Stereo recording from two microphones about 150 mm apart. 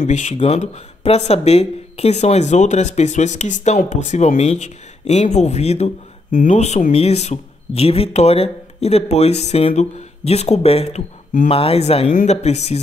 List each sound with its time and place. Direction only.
0.0 s speech: 50° left (ahead or behind)